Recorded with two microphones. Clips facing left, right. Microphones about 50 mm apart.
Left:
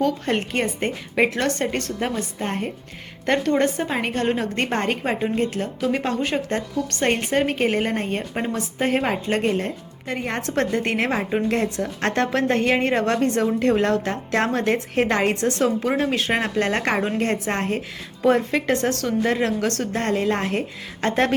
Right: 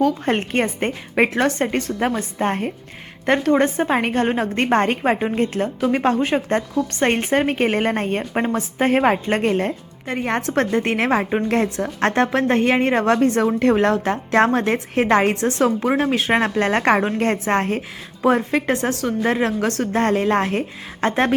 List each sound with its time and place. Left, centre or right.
0.3 s a woman's voice: right
3.2 s a woman's voice: centre; by 6.1 s right
6.7 s a woman's voice: centre
7.1 s a woman's voice: right
13.4 s a woman's voice: right
18.2 s a woman's voice: centre
19.2 s a woman's voice: right
20.4 s a woman's voice: right